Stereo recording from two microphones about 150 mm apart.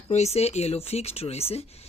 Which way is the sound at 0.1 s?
45° left (ahead or behind).